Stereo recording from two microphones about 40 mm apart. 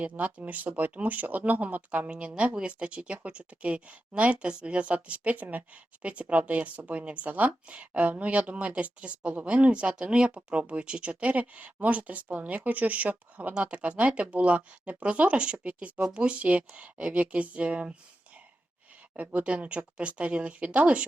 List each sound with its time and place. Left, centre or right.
0.0 s speech: right
2.0 s speech: right
19.1 s speech: right